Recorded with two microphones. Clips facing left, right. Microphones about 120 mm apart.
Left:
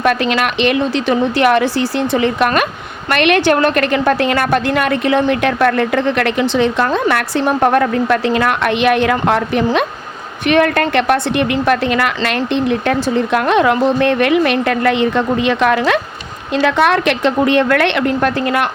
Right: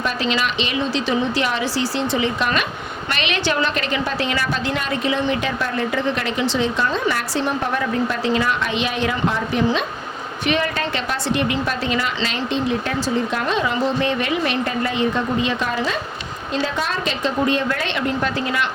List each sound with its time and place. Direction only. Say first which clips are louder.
0.0 s a woman's voice: left 7 dB; 60° left (ahead or behind)